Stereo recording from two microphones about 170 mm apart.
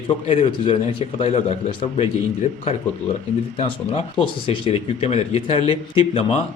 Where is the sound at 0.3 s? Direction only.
30° left (ahead or behind).